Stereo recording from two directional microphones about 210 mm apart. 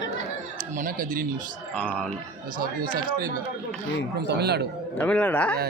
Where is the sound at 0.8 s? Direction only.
40° right (ahead or behind).